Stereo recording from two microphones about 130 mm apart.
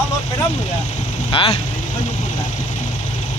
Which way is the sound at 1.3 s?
45° left (ahead or behind).